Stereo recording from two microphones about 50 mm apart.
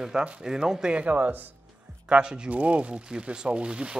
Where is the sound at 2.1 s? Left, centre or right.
Centre.